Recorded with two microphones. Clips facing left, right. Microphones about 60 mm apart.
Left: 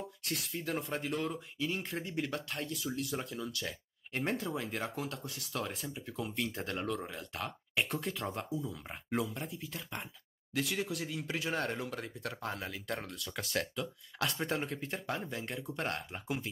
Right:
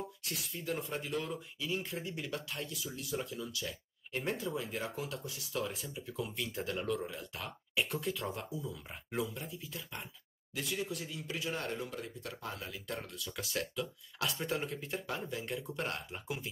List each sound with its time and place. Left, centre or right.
0.3 s speech: left
9.1 s speech: left
10.5 s speech: left
11.8 s speech: left
12.4 s speech: left